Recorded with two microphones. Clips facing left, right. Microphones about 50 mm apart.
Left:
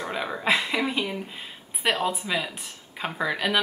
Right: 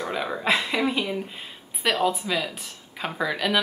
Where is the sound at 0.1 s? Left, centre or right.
Centre.